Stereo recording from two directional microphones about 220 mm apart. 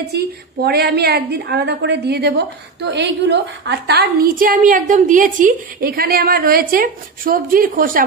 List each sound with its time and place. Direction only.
0.1 s a woman's voice: 45° right (ahead or behind)